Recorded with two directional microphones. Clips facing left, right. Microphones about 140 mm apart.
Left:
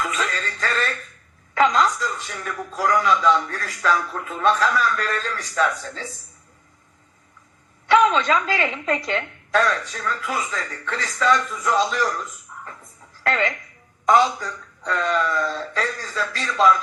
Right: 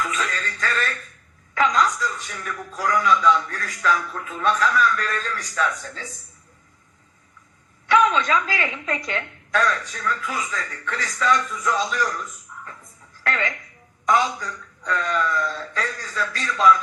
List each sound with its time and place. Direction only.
0.0 s music: 30° left (ahead or behind)
1.5 s a woman's voice: 30° left (ahead or behind)
7.9 s a woman's voice: 30° left (ahead or behind)